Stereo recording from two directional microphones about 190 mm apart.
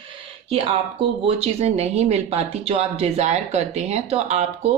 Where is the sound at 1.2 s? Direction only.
30° right (ahead or behind).